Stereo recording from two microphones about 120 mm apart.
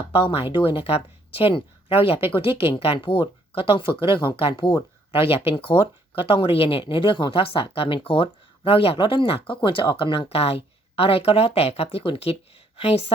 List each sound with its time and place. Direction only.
0.1 s speech: 50° left (ahead or behind)